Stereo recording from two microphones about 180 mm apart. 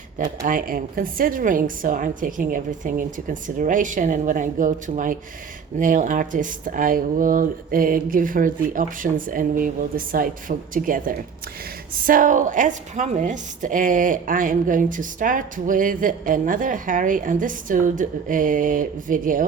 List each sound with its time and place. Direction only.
0.2 s a woman's voice: 50° right (ahead or behind)